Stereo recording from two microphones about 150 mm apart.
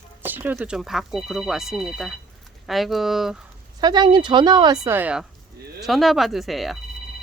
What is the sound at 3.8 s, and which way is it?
Speech, 25° right (ahead or behind).